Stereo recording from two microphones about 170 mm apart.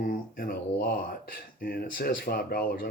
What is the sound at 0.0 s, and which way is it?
Speech, 55° left (ahead or behind).